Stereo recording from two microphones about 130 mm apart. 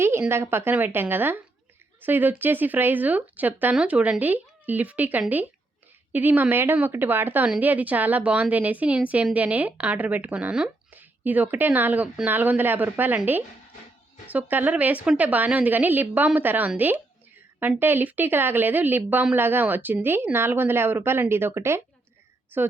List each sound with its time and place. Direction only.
0.0 s speech: 20° right (ahead or behind)